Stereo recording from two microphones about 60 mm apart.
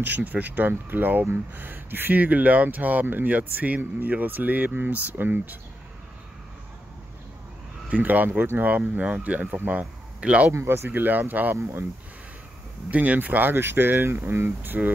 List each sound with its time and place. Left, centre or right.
0.0 s speech: right
7.9 s speech: right
10.5 s speech: right
10.9 s speech: right
12.9 s speech: right